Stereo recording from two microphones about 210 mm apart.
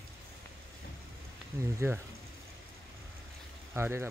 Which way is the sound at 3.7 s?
10° right (ahead or behind).